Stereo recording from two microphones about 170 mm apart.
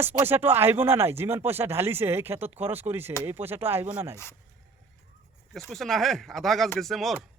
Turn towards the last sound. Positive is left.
turn(degrees=0)  # may be behind; listen again after turning